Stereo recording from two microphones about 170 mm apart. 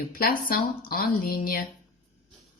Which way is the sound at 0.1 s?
60° left (ahead or behind).